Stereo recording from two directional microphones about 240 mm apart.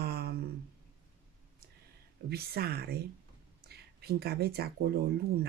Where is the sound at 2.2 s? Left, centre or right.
Right.